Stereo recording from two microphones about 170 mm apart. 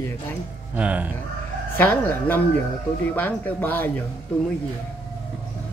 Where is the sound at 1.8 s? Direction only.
10° left (ahead or behind).